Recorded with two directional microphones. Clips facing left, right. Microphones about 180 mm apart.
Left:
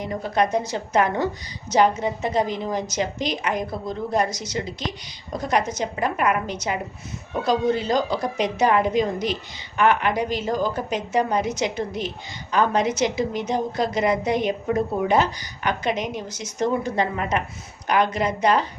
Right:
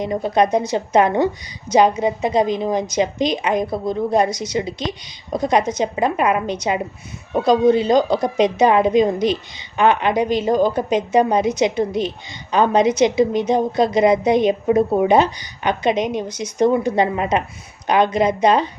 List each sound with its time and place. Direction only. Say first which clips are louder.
0.0 s a woman's voice: right 5 dB; 20° right (ahead or behind)